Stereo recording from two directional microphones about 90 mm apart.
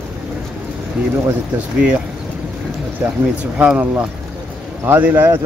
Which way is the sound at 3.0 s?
20° right (ahead or behind).